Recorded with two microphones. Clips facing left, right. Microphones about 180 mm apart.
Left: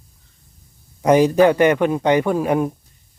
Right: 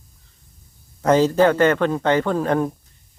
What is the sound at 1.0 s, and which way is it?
A man's voice, 15° left (ahead or behind).